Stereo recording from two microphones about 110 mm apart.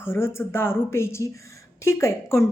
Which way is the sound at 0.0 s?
20° left (ahead or behind).